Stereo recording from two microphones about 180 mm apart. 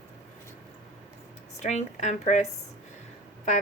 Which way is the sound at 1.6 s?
40° left (ahead or behind).